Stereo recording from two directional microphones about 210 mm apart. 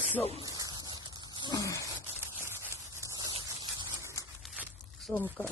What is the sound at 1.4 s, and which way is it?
Groan, 15° left (ahead or behind).